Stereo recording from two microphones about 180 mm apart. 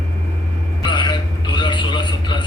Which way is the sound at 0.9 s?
25° left (ahead or behind).